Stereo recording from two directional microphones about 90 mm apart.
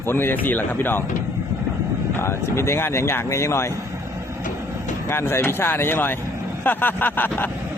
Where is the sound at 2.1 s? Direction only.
30° left (ahead or behind).